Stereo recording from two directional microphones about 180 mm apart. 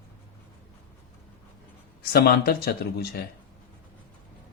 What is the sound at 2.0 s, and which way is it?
Speech, 60° left (ahead or behind).